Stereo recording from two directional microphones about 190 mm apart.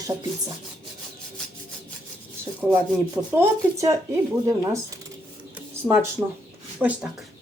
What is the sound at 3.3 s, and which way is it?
Speech, 15° right (ahead or behind).